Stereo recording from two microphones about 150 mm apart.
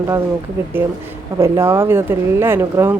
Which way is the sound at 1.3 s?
20° right (ahead or behind).